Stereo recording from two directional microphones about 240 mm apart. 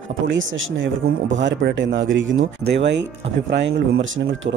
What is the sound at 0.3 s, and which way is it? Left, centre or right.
Speech, right.